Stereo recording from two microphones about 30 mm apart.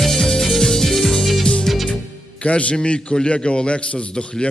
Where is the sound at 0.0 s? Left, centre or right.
Centre.